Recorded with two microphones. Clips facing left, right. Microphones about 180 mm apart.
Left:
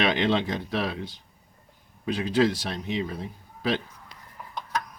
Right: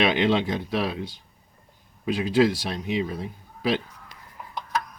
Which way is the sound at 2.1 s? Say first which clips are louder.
Right 2 dB; 10° right (ahead or behind).